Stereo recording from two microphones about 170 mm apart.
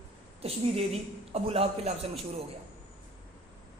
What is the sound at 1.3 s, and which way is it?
Speech, 35° right (ahead or behind).